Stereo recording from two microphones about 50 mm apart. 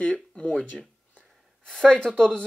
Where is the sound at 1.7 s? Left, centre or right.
Centre.